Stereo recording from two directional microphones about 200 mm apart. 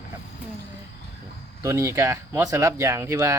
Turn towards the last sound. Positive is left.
turn(degrees=-15)  # may be behind; listen again after turning